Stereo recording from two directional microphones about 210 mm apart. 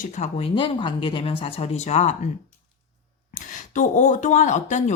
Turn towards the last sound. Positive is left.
turn(degrees=35)  # may be behind; listen again after turning